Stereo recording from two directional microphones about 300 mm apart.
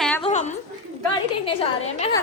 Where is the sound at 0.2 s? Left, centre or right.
Left.